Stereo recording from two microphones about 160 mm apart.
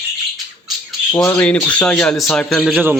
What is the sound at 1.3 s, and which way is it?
Speech, 5° left (ahead or behind).